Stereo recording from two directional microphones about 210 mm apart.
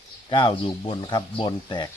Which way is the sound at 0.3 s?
25° left (ahead or behind).